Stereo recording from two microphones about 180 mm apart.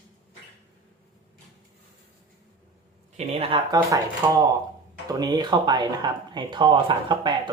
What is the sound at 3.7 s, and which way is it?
Speech, 20° right (ahead or behind).